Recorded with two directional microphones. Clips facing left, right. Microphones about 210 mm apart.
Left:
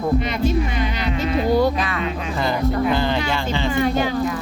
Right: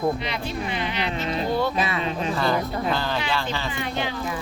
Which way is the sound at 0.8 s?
40° left (ahead or behind).